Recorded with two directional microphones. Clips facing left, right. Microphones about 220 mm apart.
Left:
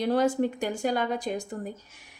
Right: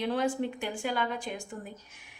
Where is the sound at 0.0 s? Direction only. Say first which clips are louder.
Left 5 dB; 40° left (ahead or behind).